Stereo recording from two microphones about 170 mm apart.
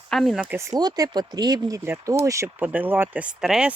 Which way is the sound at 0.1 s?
Centre (ahead or behind).